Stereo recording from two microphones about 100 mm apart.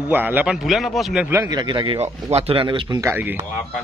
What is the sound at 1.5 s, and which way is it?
Speech, 45° right (ahead or behind).